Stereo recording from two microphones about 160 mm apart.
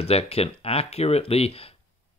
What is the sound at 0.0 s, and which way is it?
A man's voice, 40° left (ahead or behind).